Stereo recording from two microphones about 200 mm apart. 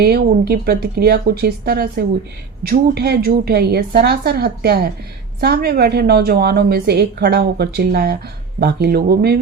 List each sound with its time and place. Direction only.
0.0 s a woman's voice: 50° right (ahead or behind)